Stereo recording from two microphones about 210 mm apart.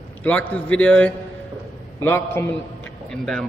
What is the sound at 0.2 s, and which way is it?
A man's voice, 5° left (ahead or behind).